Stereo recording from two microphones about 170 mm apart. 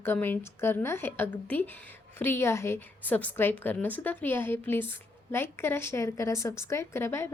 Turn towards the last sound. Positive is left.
turn(degrees=15)  # may be behind; listen again after turning